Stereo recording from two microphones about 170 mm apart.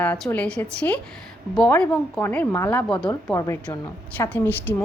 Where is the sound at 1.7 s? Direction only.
10° left (ahead or behind).